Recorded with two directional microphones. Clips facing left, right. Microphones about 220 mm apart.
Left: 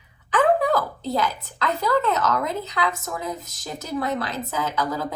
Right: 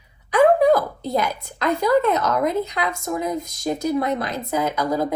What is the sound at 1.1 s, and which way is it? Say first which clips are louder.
A woman's voice: right 2 dB; 15° right (ahead or behind).